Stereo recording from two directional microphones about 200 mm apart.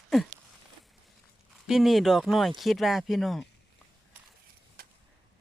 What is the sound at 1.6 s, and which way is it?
Speech, centre (ahead or behind).